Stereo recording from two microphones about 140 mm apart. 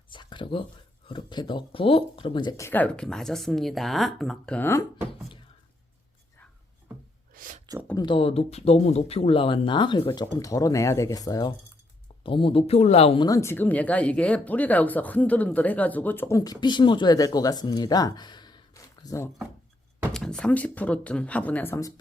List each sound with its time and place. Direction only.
0.1 s a sound: 35° left (ahead or behind)
1.0 s speech: 35° left (ahead or behind)
2.6 s speech: 15° left (ahead or behind)
7.3 s a sound: 70° right (ahead or behind)
7.9 s speech: 35° left (ahead or behind)
12.2 s speech: 40° left (ahead or behind)
13.1 s speech: 25° left (ahead or behind)
16.4 s speech: 30° left (ahead or behind)
20.1 s speech: 5° left (ahead or behind); by 21.9 s 20° left (ahead or behind)